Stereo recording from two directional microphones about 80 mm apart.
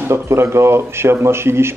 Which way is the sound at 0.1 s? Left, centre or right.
Right.